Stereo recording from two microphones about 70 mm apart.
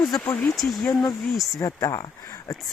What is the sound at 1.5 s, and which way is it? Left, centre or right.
Speech, left.